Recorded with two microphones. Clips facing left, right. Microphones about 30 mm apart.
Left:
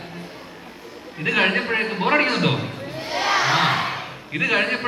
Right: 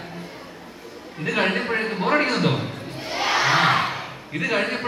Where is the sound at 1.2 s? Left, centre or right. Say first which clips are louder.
Left 3 dB; left.